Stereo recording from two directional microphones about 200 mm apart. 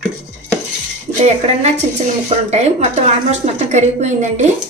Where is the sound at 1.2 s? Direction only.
35° right (ahead or behind).